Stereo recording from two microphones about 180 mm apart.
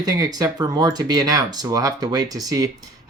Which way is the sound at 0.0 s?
20° right (ahead or behind).